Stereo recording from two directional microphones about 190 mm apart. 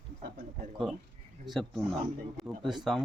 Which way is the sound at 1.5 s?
Centre (ahead or behind).